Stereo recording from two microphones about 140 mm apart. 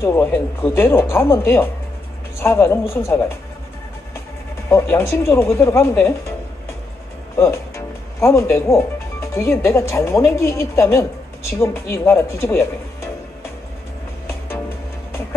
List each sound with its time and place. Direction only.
0.0 s speech: 15° left (ahead or behind)
4.6 s speech: 20° left (ahead or behind)
7.3 s speech: 20° left (ahead or behind)